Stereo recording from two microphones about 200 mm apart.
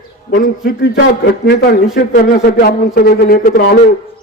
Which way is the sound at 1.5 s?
55° left (ahead or behind).